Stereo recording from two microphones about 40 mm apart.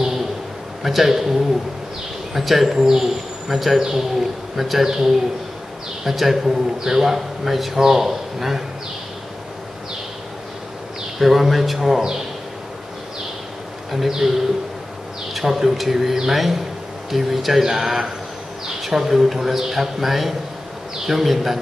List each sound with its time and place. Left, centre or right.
0.8 s a man's voice: centre
11.1 s a man's voice: centre
13.9 s a man's voice: centre
15.3 s a man's voice: centre